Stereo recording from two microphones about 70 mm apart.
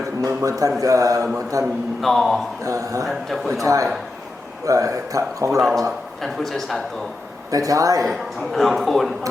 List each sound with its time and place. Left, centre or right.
0.2 s a man's voice: right
2.0 s a woman's voice: centre
2.6 s speech: right
3.1 s a woman's voice: centre
3.6 s speech: right
6.2 s a woman's voice: centre
7.5 s a man's voice: right
8.0 s a woman's voice: centre